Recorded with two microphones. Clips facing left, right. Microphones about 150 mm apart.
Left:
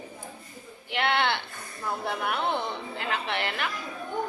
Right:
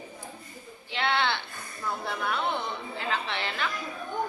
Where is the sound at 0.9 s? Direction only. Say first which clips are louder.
Left 2 dB; 55° left (ahead or behind).